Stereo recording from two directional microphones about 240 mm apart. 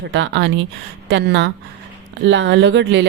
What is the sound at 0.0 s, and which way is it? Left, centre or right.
Speech, right.